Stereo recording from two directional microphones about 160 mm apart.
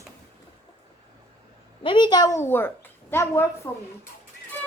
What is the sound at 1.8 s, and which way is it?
A woman's voice, 30° left (ahead or behind).